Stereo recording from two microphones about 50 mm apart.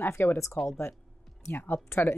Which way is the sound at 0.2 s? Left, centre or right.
Left.